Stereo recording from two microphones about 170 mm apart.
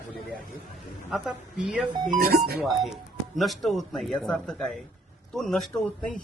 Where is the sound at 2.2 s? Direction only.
60° right (ahead or behind).